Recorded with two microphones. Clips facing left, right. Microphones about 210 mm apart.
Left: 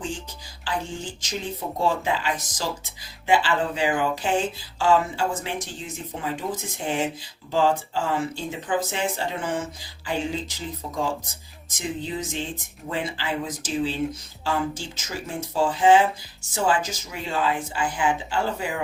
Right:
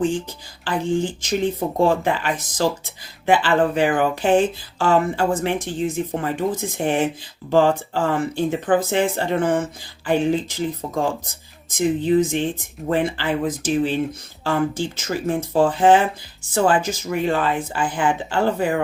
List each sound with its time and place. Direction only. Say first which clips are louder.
0.6 s speech: right 9 dB; 55° right (ahead or behind)
11.8 s speech: right 12 dB; 60° right (ahead or behind)